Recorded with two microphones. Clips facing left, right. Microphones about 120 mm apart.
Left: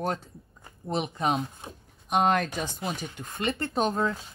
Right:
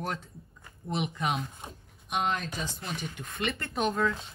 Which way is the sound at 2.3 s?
70° left (ahead or behind).